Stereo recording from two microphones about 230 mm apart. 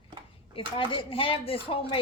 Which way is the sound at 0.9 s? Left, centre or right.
Left.